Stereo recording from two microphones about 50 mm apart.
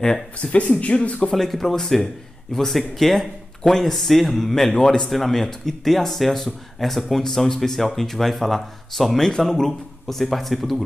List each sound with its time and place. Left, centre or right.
0.0 s speech: centre
0.6 s speech: left
1.3 s speech: centre